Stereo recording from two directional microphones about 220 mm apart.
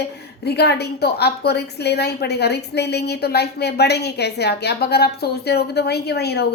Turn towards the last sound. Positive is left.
turn(degrees=45)  # may be behind; listen again after turning